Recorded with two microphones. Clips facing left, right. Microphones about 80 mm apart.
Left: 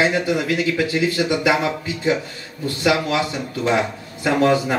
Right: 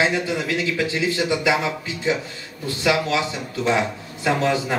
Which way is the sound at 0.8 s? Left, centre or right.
Right.